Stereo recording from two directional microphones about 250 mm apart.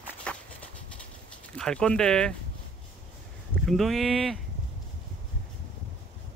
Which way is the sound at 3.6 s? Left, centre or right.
Centre.